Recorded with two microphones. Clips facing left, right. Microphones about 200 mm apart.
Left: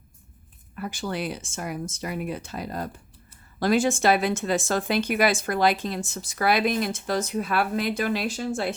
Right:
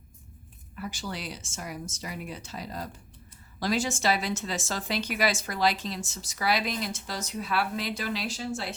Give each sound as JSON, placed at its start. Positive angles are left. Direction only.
{"t": 0.8, "sound": "speech", "side_deg": 55}